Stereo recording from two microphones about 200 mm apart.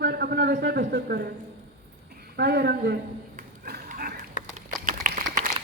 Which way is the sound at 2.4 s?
55° right (ahead or behind).